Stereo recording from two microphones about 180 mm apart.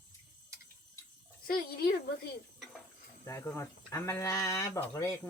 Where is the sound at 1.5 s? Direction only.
55° left (ahead or behind).